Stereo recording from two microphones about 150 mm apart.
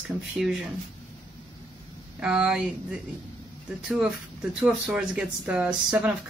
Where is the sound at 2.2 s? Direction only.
5° right (ahead or behind).